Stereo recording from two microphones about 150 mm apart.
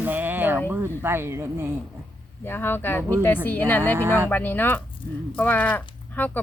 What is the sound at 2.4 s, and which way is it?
Speech, 15° left (ahead or behind).